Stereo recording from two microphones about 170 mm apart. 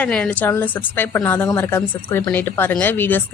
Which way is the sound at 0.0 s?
5° left (ahead or behind).